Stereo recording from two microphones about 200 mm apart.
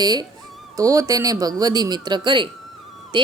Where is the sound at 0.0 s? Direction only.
20° right (ahead or behind).